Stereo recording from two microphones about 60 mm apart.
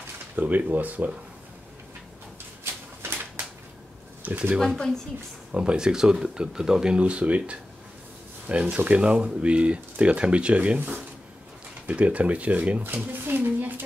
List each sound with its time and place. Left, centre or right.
0.4 s speech: right
2.6 s a sound: right
4.2 s speech: right
11.8 s speech: right
12.8 s speech: right